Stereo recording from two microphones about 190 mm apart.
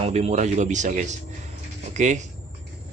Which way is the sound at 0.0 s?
35° right (ahead or behind).